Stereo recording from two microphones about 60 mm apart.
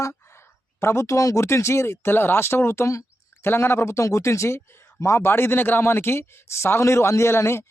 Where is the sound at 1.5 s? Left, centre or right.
Left.